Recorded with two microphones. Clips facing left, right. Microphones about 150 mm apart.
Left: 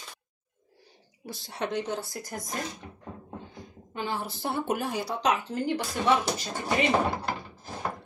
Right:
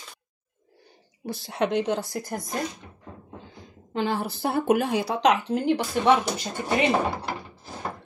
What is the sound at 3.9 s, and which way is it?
Speech, 75° right (ahead or behind).